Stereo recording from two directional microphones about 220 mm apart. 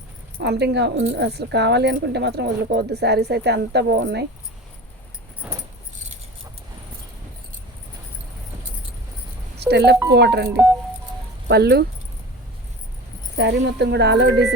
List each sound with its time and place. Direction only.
0.3 s speech: 50° right (ahead or behind)
5.4 s keys jangling: 5° right (ahead or behind)
9.6 s music: 50° right (ahead or behind)
10.1 s speech: 50° right (ahead or behind)
13.3 s speech: 50° right (ahead or behind)